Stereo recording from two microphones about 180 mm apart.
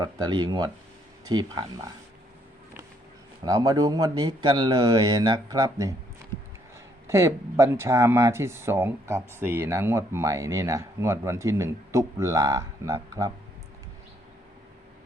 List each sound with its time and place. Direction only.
0.0 s speech: 25° right (ahead or behind)
3.4 s speech: 20° right (ahead or behind)
7.1 s speech: 15° right (ahead or behind)